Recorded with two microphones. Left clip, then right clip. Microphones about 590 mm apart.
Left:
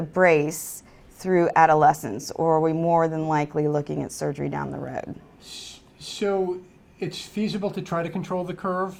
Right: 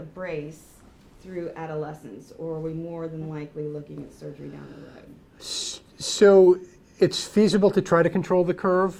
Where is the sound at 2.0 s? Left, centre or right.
Left.